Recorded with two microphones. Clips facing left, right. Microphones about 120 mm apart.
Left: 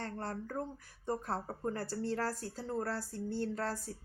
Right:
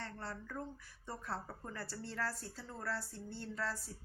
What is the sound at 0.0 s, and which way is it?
A woman's voice, 45° left (ahead or behind).